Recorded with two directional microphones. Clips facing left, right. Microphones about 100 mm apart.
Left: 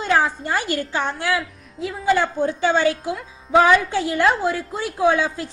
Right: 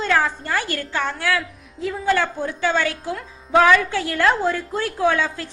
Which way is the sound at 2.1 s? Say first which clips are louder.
Left 3 dB; 20° left (ahead or behind).